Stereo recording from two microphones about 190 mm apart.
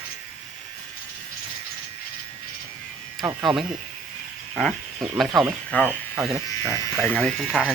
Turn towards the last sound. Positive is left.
turn(degrees=0)  # may be behind; listen again after turning